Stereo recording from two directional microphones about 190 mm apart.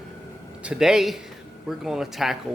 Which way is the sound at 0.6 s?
5° right (ahead or behind).